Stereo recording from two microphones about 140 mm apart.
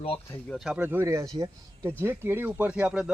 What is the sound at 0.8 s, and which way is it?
Speech, 15° right (ahead or behind).